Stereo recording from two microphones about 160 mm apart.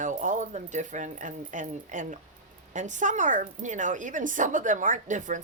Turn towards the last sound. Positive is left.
turn(degrees=-50)  # may be behind; listen again after turning